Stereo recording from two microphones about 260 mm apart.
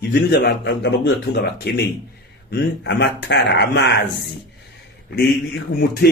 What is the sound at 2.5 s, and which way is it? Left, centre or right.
A man's voice, left.